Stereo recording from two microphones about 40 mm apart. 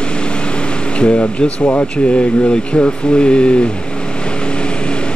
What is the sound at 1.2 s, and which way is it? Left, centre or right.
Speech, left.